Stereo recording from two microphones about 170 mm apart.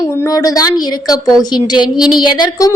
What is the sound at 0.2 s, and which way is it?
Speech, 20° left (ahead or behind).